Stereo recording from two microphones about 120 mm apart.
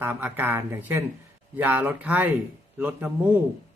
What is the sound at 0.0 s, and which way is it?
Speech, 15° right (ahead or behind).